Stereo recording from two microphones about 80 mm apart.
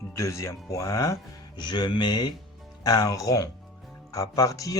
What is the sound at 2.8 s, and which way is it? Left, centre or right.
Speech, left.